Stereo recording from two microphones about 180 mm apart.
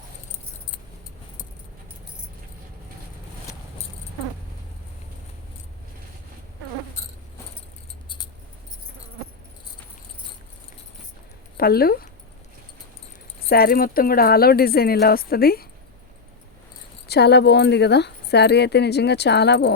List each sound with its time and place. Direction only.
11.5 s speech: 60° left (ahead or behind)
13.5 s speech: 55° left (ahead or behind)
17.1 s speech: 65° left (ahead or behind)